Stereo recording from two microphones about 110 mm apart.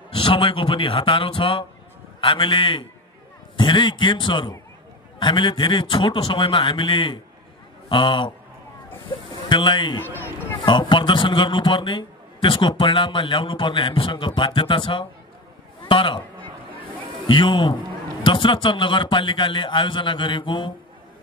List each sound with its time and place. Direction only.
0.1 s a man's voice: 50° left (ahead or behind)
9.0 s buzzer: 50° left (ahead or behind)
9.9 s a sound: 20° left (ahead or behind)
10.6 s a man's voice: 45° left (ahead or behind)
16.7 s a sound: 50° left (ahead or behind)
18.2 s a man's voice: 50° left (ahead or behind)